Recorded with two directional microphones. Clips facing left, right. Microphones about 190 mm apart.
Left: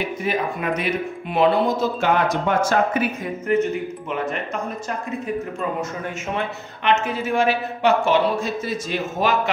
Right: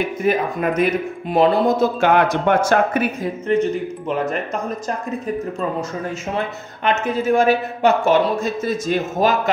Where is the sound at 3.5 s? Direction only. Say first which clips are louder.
Right 1 dB; 30° right (ahead or behind).